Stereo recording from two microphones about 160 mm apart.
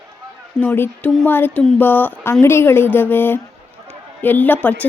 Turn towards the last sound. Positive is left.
turn(degrees=10)  # may be behind; listen again after turning